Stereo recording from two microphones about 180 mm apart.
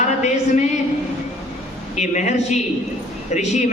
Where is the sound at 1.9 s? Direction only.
40° left (ahead or behind).